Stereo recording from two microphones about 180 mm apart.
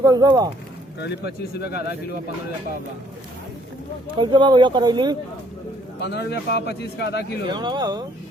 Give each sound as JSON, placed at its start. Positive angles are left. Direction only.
{"t": 0.0, "sound": "speech", "side_deg": -20}
{"t": 0.9, "sound": "speech", "side_deg": 70}
{"t": 4.2, "sound": "speech", "side_deg": -25}
{"t": 6.0, "sound": "speech", "side_deg": 70}
{"t": 7.4, "sound": "speech", "side_deg": -25}